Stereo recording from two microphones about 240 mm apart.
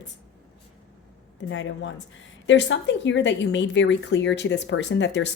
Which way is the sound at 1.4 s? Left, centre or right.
Left.